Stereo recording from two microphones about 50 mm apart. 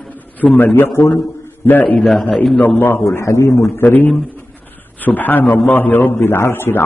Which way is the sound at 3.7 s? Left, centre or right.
Left.